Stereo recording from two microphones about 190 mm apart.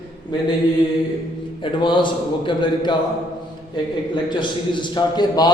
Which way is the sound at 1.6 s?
25° left (ahead or behind).